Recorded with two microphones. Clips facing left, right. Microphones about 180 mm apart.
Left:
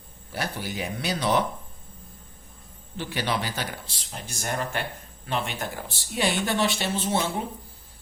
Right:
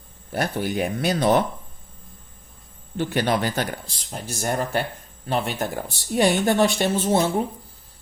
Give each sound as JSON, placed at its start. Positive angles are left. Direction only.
{"t": 0.3, "sound": "speech", "side_deg": -50}
{"t": 3.0, "sound": "speech", "side_deg": -50}